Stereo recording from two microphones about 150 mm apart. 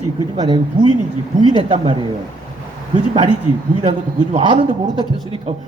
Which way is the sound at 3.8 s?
35° right (ahead or behind).